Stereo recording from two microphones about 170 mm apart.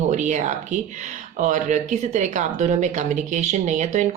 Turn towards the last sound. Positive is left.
turn(degrees=-45)  # may be behind; listen again after turning